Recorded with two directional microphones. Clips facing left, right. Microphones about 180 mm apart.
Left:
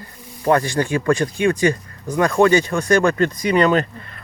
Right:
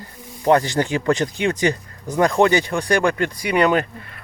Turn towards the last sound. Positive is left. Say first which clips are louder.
# left 2 dB
turn(degrees=-15)  # may be behind; listen again after turning